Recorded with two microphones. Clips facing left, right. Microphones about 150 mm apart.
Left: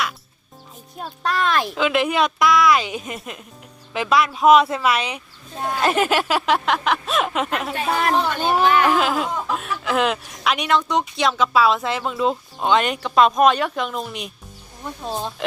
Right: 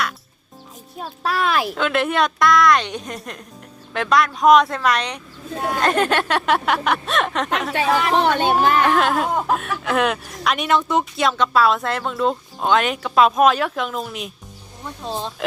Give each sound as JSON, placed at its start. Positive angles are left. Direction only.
{"t": 0.9, "sound": "speech", "side_deg": -5}
{"t": 7.7, "sound": "speech", "side_deg": -80}
{"t": 8.2, "sound": "speech", "side_deg": -65}
{"t": 8.8, "sound": "speech", "side_deg": 5}